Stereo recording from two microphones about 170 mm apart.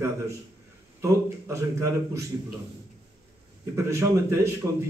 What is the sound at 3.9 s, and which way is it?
Speech, 15° right (ahead or behind).